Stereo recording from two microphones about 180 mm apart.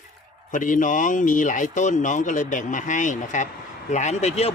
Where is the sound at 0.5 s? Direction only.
45° left (ahead or behind).